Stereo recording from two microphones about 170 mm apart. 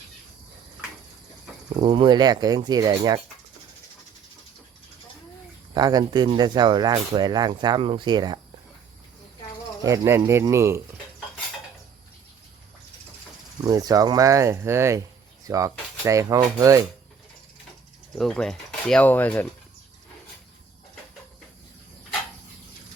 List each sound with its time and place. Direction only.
1.8 s speech: 30° right (ahead or behind)
5.7 s speech: 25° right (ahead or behind)
9.8 s speech: 20° right (ahead or behind)
13.7 s speech: 20° right (ahead or behind)
18.2 s speech: 5° left (ahead or behind)